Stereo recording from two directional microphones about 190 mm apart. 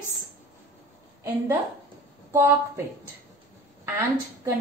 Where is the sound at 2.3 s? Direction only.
15° right (ahead or behind).